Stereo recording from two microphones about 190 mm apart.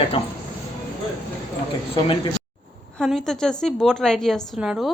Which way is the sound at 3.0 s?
Centre (ahead or behind).